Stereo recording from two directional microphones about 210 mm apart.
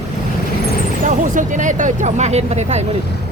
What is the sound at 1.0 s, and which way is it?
Speech, 40° right (ahead or behind).